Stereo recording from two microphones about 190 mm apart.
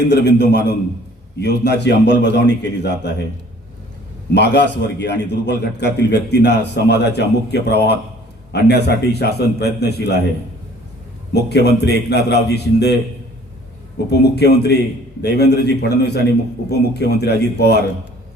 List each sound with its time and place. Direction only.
0.0 s a man's voice: 65° left (ahead or behind)
4.4 s a man's voice: 65° left (ahead or behind)
11.3 s a man's voice: 60° left (ahead or behind)
14.1 s a man's voice: 60° left (ahead or behind)